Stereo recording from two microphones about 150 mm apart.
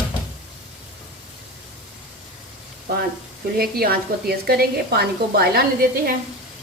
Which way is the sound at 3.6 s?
90° right.